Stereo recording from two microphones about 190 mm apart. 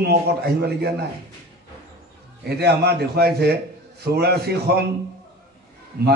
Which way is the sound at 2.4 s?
60° right (ahead or behind).